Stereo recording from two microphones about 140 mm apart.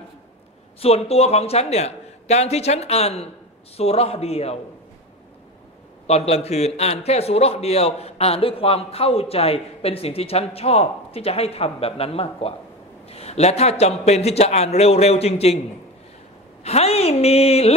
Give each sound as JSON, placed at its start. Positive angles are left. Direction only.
{"t": 0.7, "sound": "a man's voice", "side_deg": 45}
{"t": 6.0, "sound": "a man's voice", "side_deg": 50}
{"t": 16.6, "sound": "a man's voice", "side_deg": 50}